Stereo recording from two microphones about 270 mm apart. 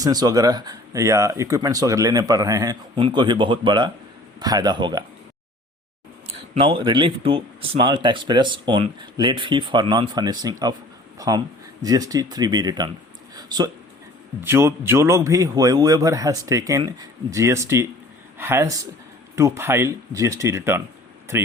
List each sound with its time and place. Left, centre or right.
0.0 s speech: centre
6.5 s speech: right
13.3 s a sound: centre
14.4 s speech: centre